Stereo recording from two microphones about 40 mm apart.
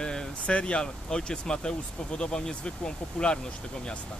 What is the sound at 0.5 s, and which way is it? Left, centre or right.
Speech, left.